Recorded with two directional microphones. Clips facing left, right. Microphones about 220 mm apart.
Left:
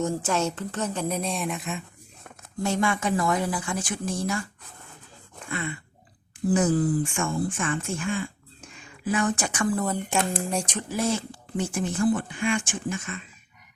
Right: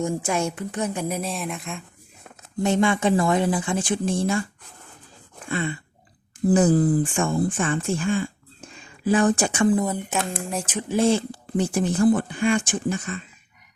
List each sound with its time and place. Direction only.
0.0 s speech: 10° right (ahead or behind)
2.6 s speech: 25° right (ahead or behind)
5.5 s speech: 30° right (ahead or behind)
9.8 s speech: 5° right (ahead or behind)
10.8 s speech: 25° right (ahead or behind)